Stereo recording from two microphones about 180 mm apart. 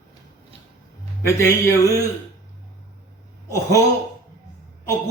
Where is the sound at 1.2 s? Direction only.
15° left (ahead or behind).